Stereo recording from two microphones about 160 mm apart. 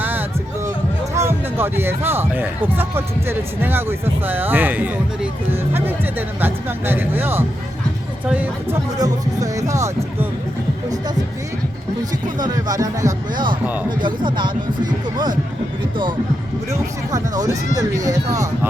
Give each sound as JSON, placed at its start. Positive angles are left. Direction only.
{"t": 0.0, "sound": "music", "side_deg": -10}
{"t": 1.1, "sound": "speech", "side_deg": -15}
{"t": 9.0, "sound": "speech", "side_deg": -20}
{"t": 12.4, "sound": "speech", "side_deg": -25}
{"t": 17.1, "sound": "speech", "side_deg": -25}